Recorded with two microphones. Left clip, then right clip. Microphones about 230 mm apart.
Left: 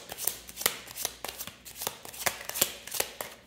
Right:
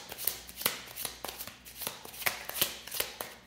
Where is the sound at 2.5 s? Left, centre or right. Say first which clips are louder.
Left 2 dB; left.